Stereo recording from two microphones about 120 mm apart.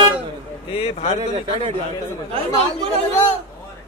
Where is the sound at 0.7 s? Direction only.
55° left (ahead or behind).